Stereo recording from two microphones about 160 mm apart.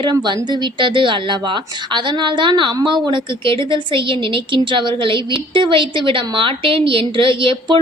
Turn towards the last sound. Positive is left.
turn(degrees=-35)  # may be behind; listen again after turning